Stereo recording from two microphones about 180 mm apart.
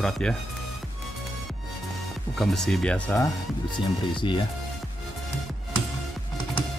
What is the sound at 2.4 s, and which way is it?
Speech, centre (ahead or behind).